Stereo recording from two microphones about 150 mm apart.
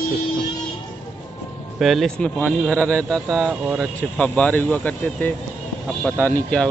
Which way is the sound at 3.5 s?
10° right (ahead or behind).